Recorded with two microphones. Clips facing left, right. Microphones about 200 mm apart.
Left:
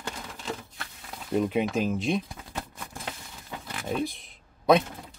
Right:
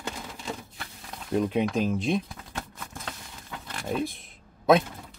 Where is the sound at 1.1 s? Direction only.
Centre (ahead or behind).